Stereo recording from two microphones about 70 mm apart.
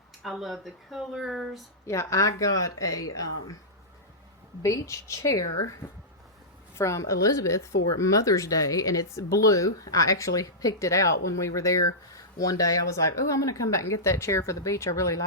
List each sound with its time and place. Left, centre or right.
0.2 s speech: centre
1.9 s speech: left
4.6 s speech: left
5.8 s speech: left
6.7 s speech: left